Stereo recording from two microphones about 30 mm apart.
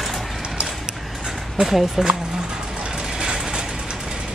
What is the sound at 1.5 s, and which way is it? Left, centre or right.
Speech, centre.